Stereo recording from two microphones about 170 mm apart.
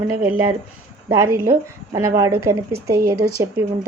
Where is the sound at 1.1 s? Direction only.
15° right (ahead or behind).